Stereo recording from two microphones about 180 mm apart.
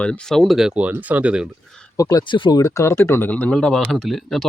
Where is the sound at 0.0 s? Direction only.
5° left (ahead or behind).